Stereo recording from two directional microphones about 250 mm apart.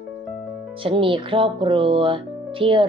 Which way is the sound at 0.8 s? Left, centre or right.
Right.